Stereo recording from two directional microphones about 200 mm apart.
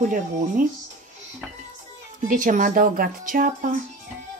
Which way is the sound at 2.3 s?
40° right (ahead or behind).